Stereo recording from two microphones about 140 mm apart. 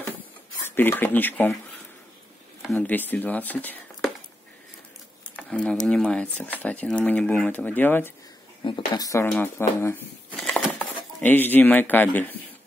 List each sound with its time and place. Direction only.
0.7 s speech: 15° left (ahead or behind)
2.6 s speech: 5° left (ahead or behind)
5.3 s a sound: 5° left (ahead or behind)
5.9 s speech: 5° left (ahead or behind)
8.6 s speech: 30° left (ahead or behind)
9.2 s speech: 15° left (ahead or behind)
10.3 s a sound: 5° left (ahead or behind)
11.2 s speech: 15° left (ahead or behind)